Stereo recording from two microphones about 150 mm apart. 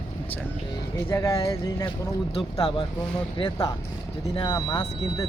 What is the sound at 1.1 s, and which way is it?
Speech, 20° left (ahead or behind).